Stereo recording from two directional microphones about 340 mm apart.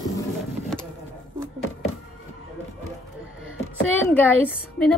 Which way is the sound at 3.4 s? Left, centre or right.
Left.